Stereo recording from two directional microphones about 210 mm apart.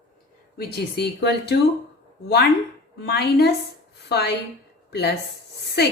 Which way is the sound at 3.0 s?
50° left (ahead or behind).